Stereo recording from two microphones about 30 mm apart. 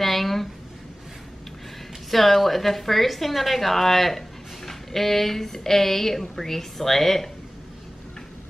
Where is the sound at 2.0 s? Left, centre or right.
Centre.